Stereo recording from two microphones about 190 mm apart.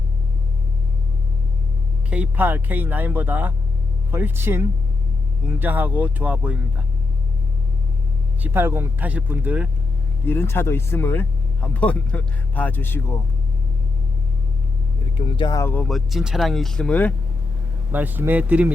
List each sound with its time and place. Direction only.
2.0 s speech: 5° right (ahead or behind)
8.4 s speech: 10° right (ahead or behind)
10.2 s speech: 10° left (ahead or behind)
15.2 s speech: 25° left (ahead or behind)
15.6 s speech: 10° left (ahead or behind)
17.9 s speech: 10° right (ahead or behind)